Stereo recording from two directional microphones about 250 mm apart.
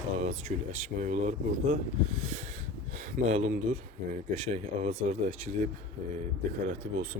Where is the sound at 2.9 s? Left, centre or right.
Right.